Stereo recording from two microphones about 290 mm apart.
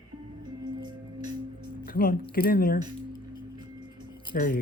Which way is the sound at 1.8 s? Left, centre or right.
Left.